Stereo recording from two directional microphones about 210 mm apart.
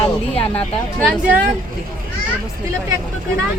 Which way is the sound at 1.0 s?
5° right (ahead or behind).